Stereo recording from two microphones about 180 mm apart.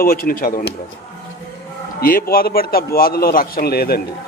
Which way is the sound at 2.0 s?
55° left (ahead or behind).